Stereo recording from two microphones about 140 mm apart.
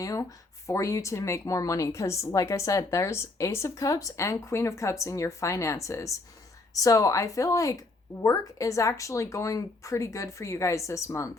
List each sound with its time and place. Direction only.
0.0 s a woman's voice: 25° left (ahead or behind)